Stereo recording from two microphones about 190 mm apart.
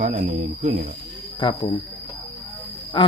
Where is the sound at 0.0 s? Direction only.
40° right (ahead or behind).